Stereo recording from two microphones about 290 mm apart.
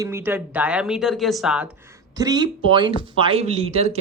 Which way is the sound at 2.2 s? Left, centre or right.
Centre.